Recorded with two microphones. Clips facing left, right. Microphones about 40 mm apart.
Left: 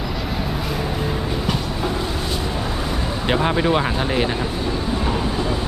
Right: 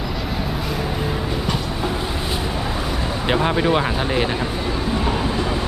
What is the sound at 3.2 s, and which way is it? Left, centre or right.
Speech, centre.